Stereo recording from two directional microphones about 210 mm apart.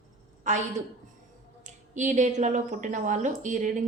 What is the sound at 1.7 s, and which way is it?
A woman's voice, 35° right (ahead or behind).